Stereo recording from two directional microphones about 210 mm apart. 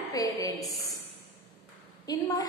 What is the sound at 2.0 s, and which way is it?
Speech, 20° left (ahead or behind).